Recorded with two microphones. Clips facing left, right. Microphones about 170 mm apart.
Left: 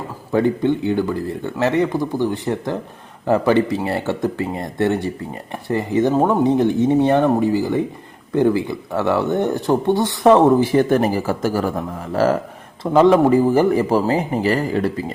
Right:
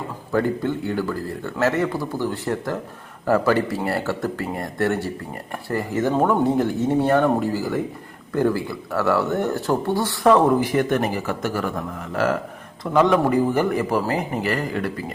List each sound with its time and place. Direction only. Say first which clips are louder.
0.3 s a man's voice: left 5 dB; 20° left (ahead or behind)